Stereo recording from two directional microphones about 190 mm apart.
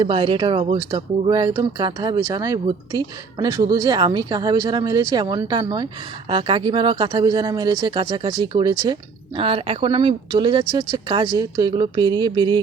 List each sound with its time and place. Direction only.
0.0 s speech: 30° right (ahead or behind)